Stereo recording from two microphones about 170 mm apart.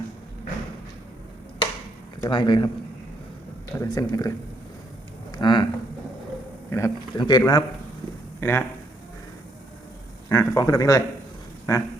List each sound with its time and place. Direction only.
2.2 s speech: 25° left (ahead or behind)
3.8 s speech: 20° left (ahead or behind)
5.3 s a sound: 25° left (ahead or behind)
6.7 s a man's voice: 15° left (ahead or behind)
8.4 s speech: 15° left (ahead or behind)
10.2 s speech: 20° left (ahead or behind)